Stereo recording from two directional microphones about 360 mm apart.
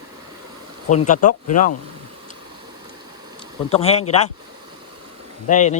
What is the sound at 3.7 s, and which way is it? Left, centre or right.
Speech, centre.